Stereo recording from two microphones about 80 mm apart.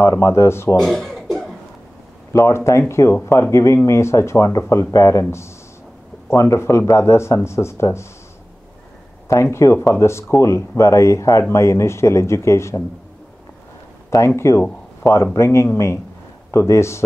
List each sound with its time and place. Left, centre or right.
0.0 s speech: left
0.7 s chuckle: centre
2.3 s speech: left
6.2 s speech: left
9.3 s speech: left
14.1 s speech: left